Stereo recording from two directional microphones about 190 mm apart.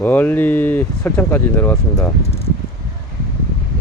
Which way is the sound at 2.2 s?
30° left (ahead or behind).